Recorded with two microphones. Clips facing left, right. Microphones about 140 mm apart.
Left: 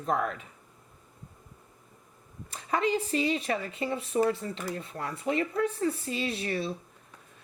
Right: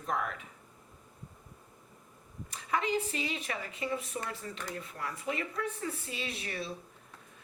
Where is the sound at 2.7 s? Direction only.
35° left (ahead or behind).